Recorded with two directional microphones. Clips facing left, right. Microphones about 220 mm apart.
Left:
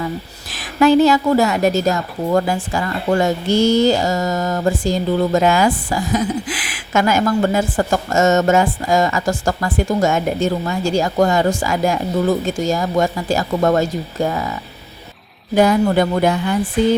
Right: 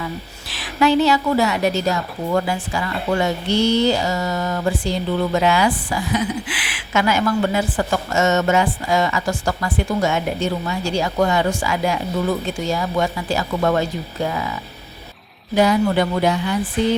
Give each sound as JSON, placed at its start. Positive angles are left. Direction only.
{"t": 0.8, "sound": "a woman's voice", "side_deg": 45}
{"t": 15.5, "sound": "a woman's voice", "side_deg": 50}